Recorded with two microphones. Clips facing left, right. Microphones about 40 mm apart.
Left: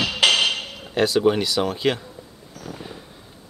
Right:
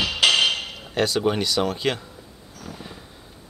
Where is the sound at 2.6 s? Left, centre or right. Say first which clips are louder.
Left 2 dB; centre.